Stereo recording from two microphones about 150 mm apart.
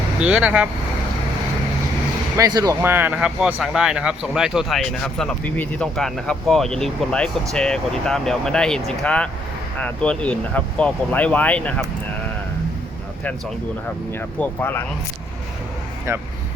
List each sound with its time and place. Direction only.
0.2 s speech: 10° right (ahead or behind)
2.3 s speech: 25° right (ahead or behind)
2.8 s speech: 15° right (ahead or behind); by 11.9 s 10° left (ahead or behind)
14.3 s speech: 10° left (ahead or behind)